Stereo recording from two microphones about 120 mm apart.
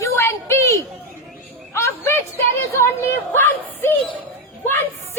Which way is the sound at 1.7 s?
20° left (ahead or behind).